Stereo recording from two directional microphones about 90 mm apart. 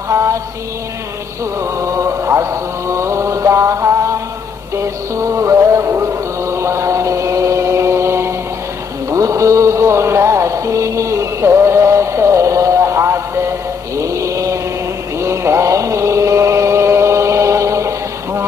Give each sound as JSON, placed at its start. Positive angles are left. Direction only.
{"t": 0.1, "sound": "mantra", "side_deg": -35}
{"t": 1.8, "sound": "mantra", "side_deg": -35}
{"t": 4.7, "sound": "music", "side_deg": -35}
{"t": 9.1, "sound": "mantra", "side_deg": -35}
{"t": 15.1, "sound": "chant", "side_deg": -30}